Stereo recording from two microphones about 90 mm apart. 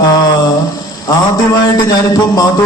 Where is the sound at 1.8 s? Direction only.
45° left (ahead or behind).